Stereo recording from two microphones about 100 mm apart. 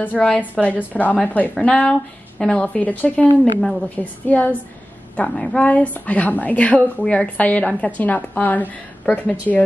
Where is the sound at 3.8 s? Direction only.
15° left (ahead or behind).